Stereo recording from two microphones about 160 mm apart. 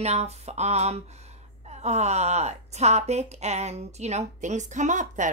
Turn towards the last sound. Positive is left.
turn(degrees=-50)  # may be behind; listen again after turning